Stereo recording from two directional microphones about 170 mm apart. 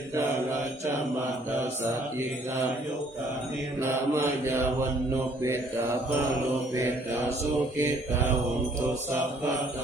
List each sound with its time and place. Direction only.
3.8 s mantra: 15° right (ahead or behind)
7.8 s mantra: 15° right (ahead or behind)